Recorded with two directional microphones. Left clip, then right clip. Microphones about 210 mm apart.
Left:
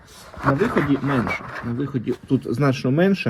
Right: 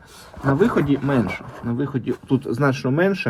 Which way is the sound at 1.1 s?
20° right (ahead or behind).